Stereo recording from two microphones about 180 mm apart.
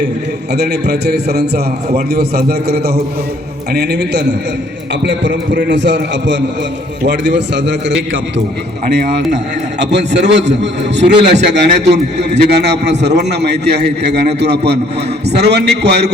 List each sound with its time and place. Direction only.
0.5 s a man's voice: 65° right (ahead or behind)
5.0 s a man's voice: 80° right